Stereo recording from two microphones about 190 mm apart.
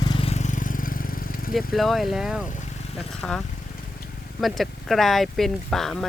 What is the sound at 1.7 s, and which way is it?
Speech, centre (ahead or behind).